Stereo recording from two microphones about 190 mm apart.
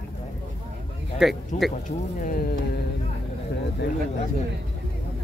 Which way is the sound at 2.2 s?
45° left (ahead or behind).